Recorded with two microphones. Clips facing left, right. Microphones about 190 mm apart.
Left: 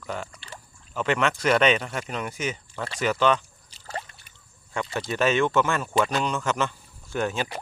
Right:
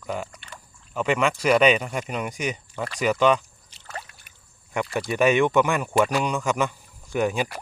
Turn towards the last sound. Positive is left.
turn(degrees=-10)  # may be behind; listen again after turning